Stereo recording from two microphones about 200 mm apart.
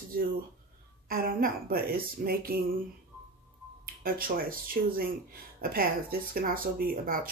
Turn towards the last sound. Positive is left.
turn(degrees=-45)  # may be behind; listen again after turning